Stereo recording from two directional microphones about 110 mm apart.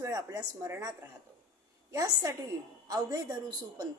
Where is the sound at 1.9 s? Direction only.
30° right (ahead or behind).